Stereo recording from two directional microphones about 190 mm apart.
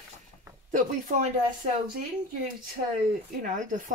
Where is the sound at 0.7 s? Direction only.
45° right (ahead or behind).